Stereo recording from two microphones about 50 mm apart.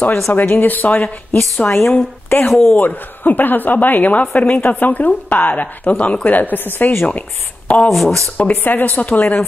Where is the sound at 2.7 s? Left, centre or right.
Left.